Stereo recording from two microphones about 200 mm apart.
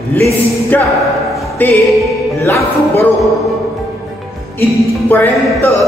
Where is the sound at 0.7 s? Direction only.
10° left (ahead or behind).